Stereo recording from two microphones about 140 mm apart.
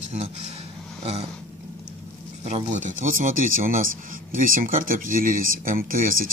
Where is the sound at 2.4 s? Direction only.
55° right (ahead or behind); by 6.2 s 80° right.